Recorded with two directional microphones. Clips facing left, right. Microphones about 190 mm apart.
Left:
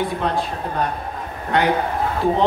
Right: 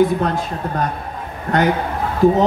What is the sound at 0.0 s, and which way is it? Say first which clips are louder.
Speech: right 6 dB; 45° right (ahead or behind).